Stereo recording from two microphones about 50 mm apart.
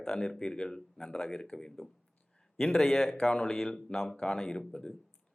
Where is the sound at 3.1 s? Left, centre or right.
Centre.